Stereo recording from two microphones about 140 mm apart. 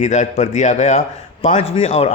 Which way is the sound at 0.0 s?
55° left (ahead or behind).